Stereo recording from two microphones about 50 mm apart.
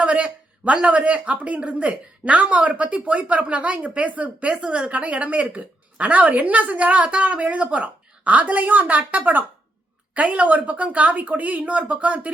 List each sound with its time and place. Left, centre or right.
0.0 s speech: right